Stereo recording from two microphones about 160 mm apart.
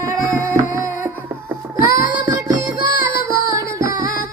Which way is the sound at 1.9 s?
20° right (ahead or behind).